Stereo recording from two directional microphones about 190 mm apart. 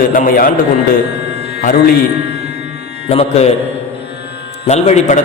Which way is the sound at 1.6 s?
50° left (ahead or behind).